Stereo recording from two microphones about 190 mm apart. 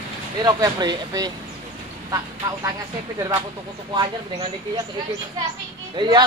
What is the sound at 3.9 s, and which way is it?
Speech, 25° right (ahead or behind).